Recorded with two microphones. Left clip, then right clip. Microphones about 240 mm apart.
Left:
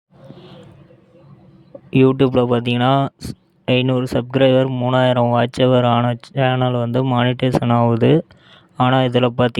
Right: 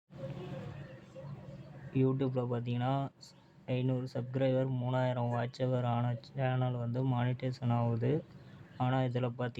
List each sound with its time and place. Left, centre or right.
2.0 s speech: left